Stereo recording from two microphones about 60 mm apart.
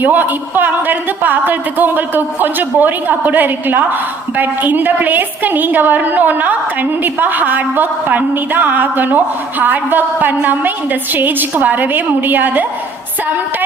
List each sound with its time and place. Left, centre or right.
0.0 s speech: right